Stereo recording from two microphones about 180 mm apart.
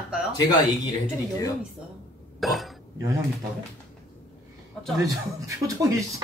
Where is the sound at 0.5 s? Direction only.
20° left (ahead or behind).